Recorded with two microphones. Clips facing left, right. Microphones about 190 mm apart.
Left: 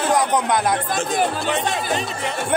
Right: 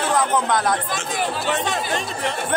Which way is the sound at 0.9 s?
50° left (ahead or behind).